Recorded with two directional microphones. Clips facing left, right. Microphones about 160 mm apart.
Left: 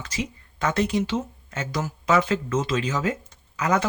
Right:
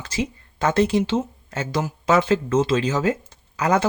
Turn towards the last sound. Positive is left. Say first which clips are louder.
# right 3 dB
turn(degrees=-30)  # may be behind; listen again after turning